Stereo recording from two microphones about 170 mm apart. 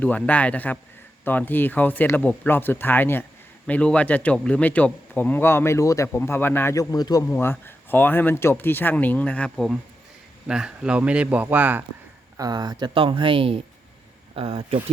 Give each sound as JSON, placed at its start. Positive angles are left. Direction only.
{"t": 0.0, "sound": "a man's voice", "side_deg": 10}
{"t": 12.4, "sound": "speech", "side_deg": -25}